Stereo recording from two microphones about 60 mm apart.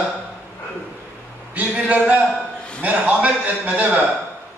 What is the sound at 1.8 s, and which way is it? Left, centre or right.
A man's voice, right.